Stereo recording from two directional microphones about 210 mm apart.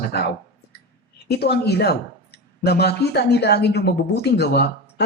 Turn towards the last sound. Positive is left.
turn(degrees=50)  # may be behind; listen again after turning